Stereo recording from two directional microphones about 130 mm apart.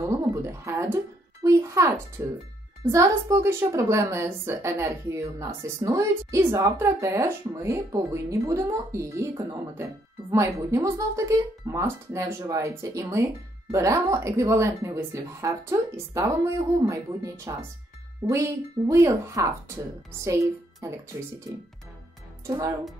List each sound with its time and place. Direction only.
0.3 s speech: 20° right (ahead or behind)